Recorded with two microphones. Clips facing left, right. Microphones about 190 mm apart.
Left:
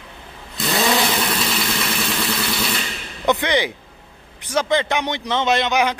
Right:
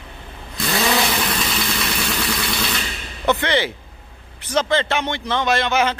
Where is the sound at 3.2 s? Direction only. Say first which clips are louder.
Even; 15° left (ahead or behind).